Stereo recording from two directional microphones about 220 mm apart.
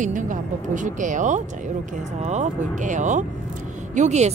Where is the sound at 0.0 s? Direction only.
35° right (ahead or behind).